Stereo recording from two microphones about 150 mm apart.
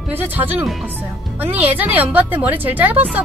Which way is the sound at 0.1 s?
15° right (ahead or behind).